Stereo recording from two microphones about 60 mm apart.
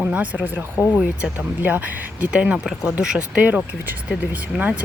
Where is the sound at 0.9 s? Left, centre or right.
Centre.